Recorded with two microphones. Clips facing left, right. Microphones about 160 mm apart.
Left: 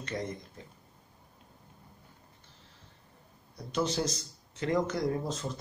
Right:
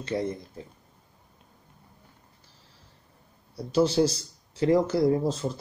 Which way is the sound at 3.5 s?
30° right (ahead or behind).